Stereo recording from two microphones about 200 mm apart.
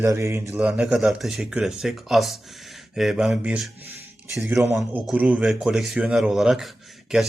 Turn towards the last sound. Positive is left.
turn(degrees=-5)  # may be behind; listen again after turning